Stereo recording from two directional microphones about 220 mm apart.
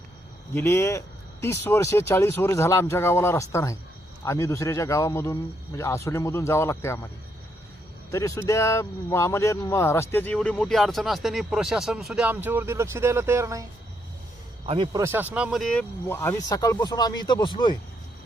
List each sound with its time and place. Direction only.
0.5 s speech: 10° left (ahead or behind)
8.1 s speech: 15° left (ahead or behind); by 13.7 s 15° right (ahead or behind)
14.7 s speech: 20° right (ahead or behind)
15.0 s speech: 10° right (ahead or behind); by 17.7 s 20° left (ahead or behind)